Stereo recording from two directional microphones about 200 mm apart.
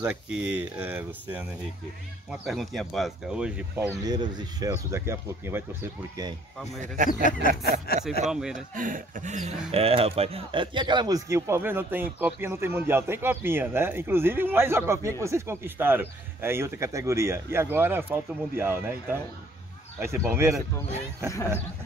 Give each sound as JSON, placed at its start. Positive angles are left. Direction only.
{"t": 0.0, "sound": "speech", "side_deg": -5}
{"t": 2.4, "sound": "speech", "side_deg": 0}
{"t": 4.0, "sound": "speech", "side_deg": -20}
{"t": 7.2, "sound": "speech", "side_deg": 45}
{"t": 8.3, "sound": "speech", "side_deg": -5}
{"t": 8.5, "sound": "speech", "side_deg": -40}
{"t": 20.0, "sound": "speech", "side_deg": -10}